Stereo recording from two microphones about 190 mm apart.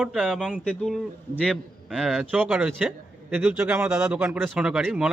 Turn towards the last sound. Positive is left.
turn(degrees=-5)  # may be behind; listen again after turning